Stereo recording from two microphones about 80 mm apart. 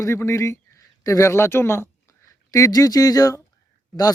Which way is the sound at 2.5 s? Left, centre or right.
Left.